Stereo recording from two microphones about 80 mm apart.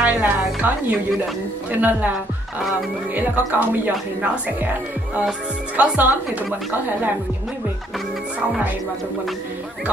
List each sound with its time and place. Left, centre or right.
0.0 s a woman's voice: centre
3.2 s a woman's voice: right
5.8 s a woman's voice: right